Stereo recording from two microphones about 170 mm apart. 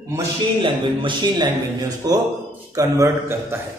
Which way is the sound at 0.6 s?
25° right (ahead or behind).